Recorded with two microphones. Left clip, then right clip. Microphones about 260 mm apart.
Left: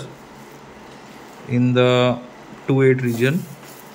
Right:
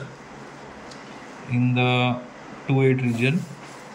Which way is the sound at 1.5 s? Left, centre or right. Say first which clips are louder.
Left 6 dB; centre.